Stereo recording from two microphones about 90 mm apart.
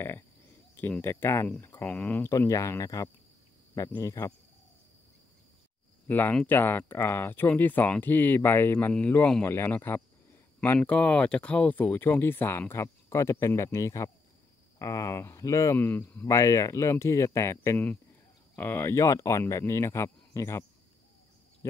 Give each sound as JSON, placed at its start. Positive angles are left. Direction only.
{"t": 1.0, "sound": "speech", "side_deg": 25}
{"t": 2.2, "sound": "speech", "side_deg": 35}
{"t": 6.0, "sound": "speech", "side_deg": 25}
{"t": 8.7, "sound": "speech", "side_deg": 15}
{"t": 15.8, "sound": "speech", "side_deg": 20}